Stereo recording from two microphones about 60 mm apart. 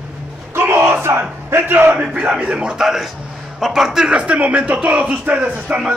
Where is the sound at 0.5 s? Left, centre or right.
Right.